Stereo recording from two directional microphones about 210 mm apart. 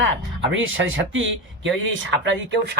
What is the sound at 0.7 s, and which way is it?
Speech, 65° right (ahead or behind).